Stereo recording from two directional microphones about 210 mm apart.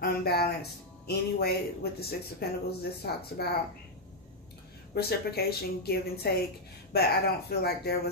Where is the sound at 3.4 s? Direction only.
50° left (ahead or behind).